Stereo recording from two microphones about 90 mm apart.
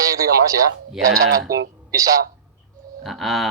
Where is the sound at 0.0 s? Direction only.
40° right (ahead or behind).